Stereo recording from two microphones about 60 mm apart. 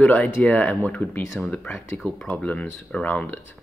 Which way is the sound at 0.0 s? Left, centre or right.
Left.